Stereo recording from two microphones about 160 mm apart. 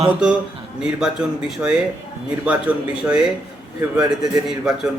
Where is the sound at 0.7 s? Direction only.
5° right (ahead or behind).